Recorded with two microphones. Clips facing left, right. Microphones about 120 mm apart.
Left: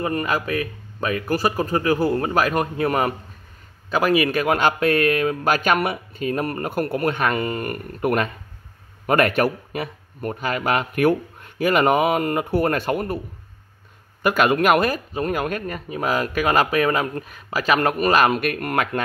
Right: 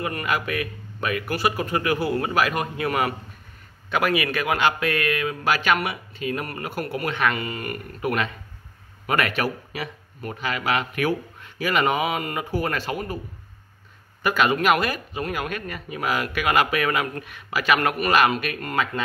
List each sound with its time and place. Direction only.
0.0 s speech: 35° left (ahead or behind); by 13.2 s 50° left (ahead or behind)
14.2 s speech: 50° left (ahead or behind)